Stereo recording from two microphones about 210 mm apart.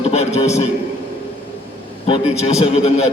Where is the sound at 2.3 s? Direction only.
30° left (ahead or behind).